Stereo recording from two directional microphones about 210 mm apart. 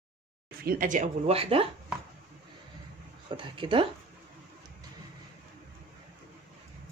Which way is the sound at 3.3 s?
25° right (ahead or behind).